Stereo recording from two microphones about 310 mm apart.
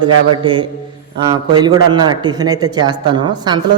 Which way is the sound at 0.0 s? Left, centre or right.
Centre.